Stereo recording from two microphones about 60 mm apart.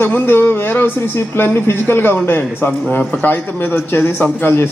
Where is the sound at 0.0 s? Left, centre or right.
Left.